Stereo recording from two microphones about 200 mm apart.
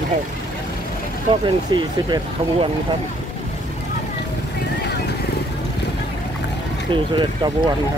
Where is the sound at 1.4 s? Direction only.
25° right (ahead or behind).